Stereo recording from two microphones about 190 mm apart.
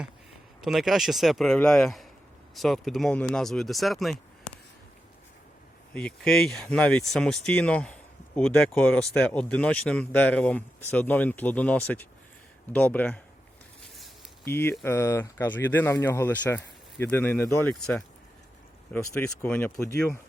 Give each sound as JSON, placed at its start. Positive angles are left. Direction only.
{"t": 0.6, "sound": "speech", "side_deg": 0}
{"t": 5.9, "sound": "speech", "side_deg": 5}
{"t": 14.4, "sound": "speech", "side_deg": 10}